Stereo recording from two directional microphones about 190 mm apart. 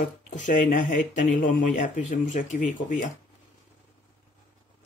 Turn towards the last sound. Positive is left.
turn(degrees=40)  # may be behind; listen again after turning